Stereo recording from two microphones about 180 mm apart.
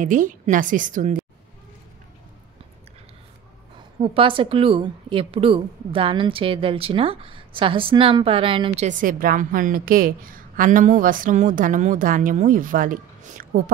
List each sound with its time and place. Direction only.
0.0 s a woman's voice: 45° right (ahead or behind)
4.0 s a woman's voice: 30° right (ahead or behind)
8.8 s a woman's voice: 50° right (ahead or behind)